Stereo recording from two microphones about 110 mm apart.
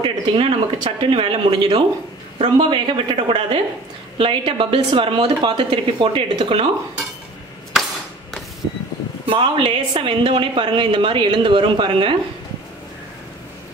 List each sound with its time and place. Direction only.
0.0 s a woman's voice: 60° right (ahead or behind)
9.2 s a woman's voice: 55° right (ahead or behind)